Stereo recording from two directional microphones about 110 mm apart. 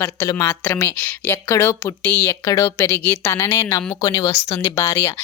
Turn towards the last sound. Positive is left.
turn(degrees=25)  # may be behind; listen again after turning